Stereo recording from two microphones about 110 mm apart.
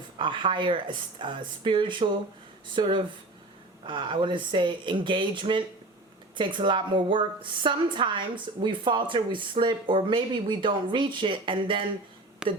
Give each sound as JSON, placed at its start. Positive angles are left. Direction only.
{"t": 0.2, "sound": "speech", "side_deg": -45}
{"t": 12.4, "sound": "speech", "side_deg": -5}